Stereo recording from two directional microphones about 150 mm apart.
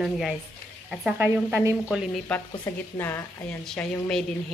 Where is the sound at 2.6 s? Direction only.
15° left (ahead or behind).